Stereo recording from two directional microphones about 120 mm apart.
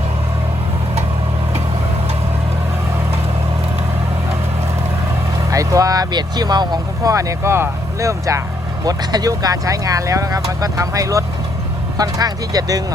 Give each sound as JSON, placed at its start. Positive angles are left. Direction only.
{"t": 5.5, "sound": "speech", "side_deg": -30}